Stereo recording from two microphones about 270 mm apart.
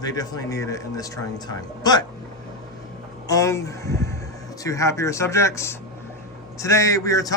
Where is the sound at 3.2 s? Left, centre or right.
Centre.